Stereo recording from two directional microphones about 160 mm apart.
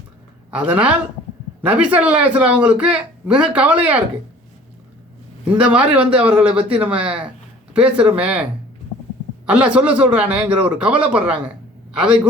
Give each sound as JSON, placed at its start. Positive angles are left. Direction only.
{"t": 0.5, "sound": "speech", "side_deg": -10}
{"t": 5.5, "sound": "speech", "side_deg": -5}
{"t": 9.5, "sound": "speech", "side_deg": -5}